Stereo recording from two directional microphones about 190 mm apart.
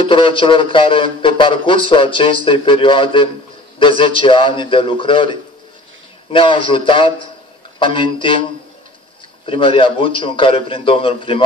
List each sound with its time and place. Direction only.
0.0 s speech: 25° left (ahead or behind)
9.5 s speech: 30° left (ahead or behind)